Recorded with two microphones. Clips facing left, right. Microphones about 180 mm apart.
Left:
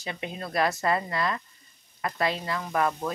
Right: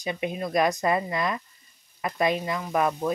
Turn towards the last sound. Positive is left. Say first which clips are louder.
# right 2 dB
turn(degrees=-15)  # may be behind; listen again after turning